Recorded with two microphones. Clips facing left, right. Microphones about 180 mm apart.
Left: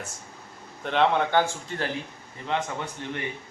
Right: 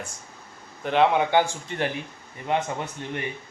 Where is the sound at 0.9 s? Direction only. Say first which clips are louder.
Right 2 dB; 5° right (ahead or behind).